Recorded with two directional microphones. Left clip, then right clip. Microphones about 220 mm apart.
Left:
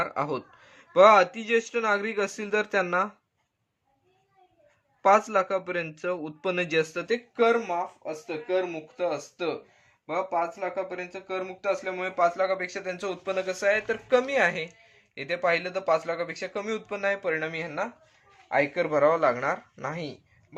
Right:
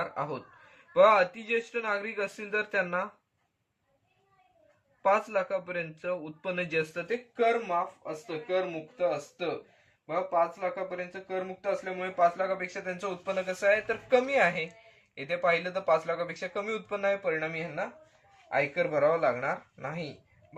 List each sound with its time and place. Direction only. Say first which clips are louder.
0.0 s speech: left 5 dB; 55° left (ahead or behind)
5.0 s speech: left 5 dB; 50° left (ahead or behind)
10.9 s speech: left 2 dB; 40° left (ahead or behind)